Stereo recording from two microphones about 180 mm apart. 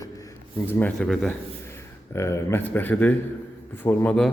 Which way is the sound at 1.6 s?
15° left (ahead or behind).